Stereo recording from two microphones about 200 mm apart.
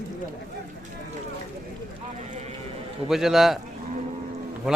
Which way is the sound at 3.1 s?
Centre (ahead or behind).